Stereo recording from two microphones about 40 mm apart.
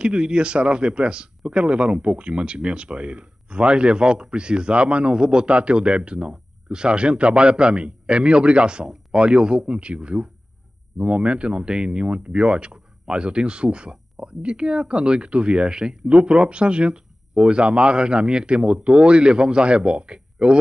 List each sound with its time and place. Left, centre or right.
0.0 s speech: right